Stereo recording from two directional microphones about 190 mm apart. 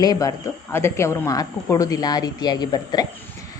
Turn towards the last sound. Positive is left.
turn(degrees=20)  # may be behind; listen again after turning